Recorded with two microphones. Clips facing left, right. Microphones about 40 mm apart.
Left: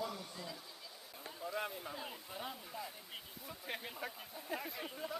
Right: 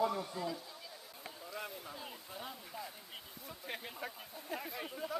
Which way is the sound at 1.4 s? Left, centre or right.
Centre.